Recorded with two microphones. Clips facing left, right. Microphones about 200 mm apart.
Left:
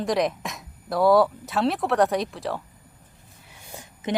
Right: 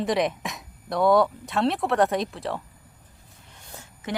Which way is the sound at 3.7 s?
20° left (ahead or behind).